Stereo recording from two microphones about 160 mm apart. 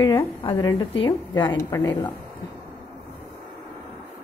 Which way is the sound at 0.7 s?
30° left (ahead or behind).